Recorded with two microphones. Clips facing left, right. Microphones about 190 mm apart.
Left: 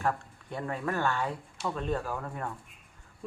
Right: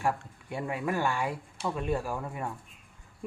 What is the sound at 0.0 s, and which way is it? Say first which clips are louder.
Speech: right 1 dB; 10° right (ahead or behind).